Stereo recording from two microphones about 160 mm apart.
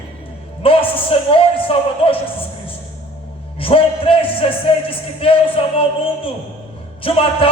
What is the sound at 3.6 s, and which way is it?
Speech, 35° left (ahead or behind).